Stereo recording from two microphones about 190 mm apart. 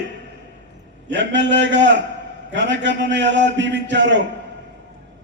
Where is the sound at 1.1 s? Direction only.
70° right (ahead or behind).